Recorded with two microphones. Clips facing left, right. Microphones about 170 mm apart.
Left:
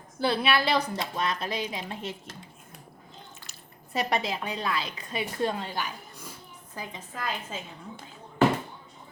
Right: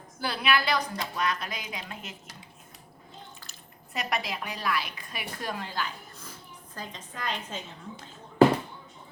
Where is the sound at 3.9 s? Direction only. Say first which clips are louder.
Left 4 dB; 30° left (ahead or behind); by 7.6 s 5° left (ahead or behind).